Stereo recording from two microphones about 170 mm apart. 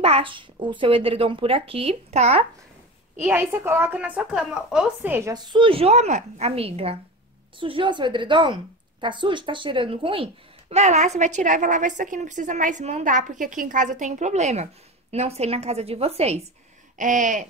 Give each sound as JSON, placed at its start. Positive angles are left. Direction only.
{"t": 0.0, "sound": "speech", "side_deg": -35}
{"t": 3.2, "sound": "a woman's voice", "side_deg": -10}
{"t": 5.3, "sound": "a woman's voice", "side_deg": -30}
{"t": 17.0, "sound": "a woman's voice", "side_deg": -50}